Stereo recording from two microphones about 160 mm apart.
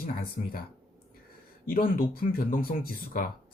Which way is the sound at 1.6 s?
65° left (ahead or behind).